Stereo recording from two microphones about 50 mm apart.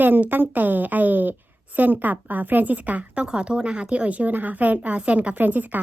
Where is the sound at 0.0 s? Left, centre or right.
Right.